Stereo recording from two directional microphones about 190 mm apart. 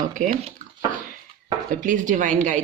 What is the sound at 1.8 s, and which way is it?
Speech, 40° right (ahead or behind).